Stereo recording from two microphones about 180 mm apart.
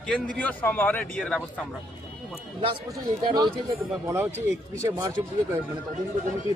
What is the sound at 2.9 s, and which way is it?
A man's voice, 20° right (ahead or behind).